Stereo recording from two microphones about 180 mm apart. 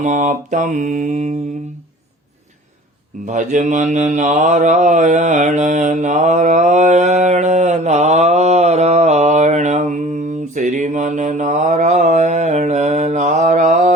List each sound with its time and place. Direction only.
0.0 s mantra: 45° right (ahead or behind)
3.2 s mantra: 45° right (ahead or behind)